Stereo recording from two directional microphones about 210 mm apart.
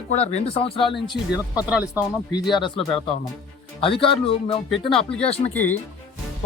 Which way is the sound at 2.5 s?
20° left (ahead or behind).